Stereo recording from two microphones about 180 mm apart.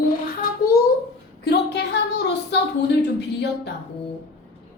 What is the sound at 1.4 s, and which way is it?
Speech, 65° left (ahead or behind).